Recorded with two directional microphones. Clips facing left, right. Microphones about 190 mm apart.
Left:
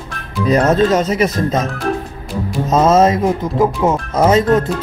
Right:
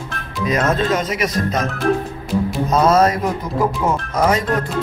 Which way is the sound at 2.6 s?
25° left (ahead or behind).